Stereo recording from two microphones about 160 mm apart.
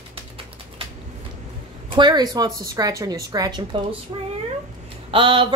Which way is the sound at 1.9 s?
25° right (ahead or behind).